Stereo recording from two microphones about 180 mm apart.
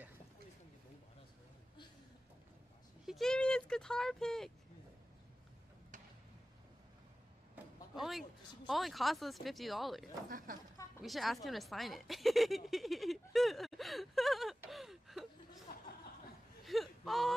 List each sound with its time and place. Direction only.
3.1 s speech: centre (ahead or behind)
7.5 s speech: centre (ahead or behind)
10.3 s speech: 50° right (ahead or behind)
11.0 s speech: centre (ahead or behind)
11.4 s a sound: centre (ahead or behind)
16.6 s a sound: centre (ahead or behind)